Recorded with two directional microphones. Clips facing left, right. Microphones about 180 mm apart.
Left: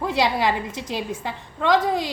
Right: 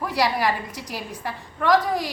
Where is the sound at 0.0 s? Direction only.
25° left (ahead or behind).